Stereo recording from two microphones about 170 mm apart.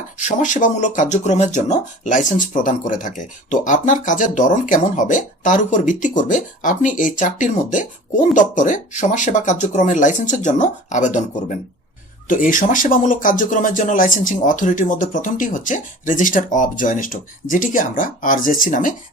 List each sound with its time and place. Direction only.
0.3 s speech: 45° left (ahead or behind)